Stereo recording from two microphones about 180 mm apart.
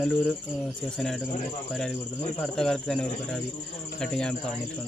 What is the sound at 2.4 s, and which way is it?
Speech, 5° left (ahead or behind).